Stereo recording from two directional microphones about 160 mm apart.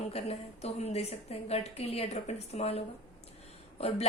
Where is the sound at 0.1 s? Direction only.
40° left (ahead or behind).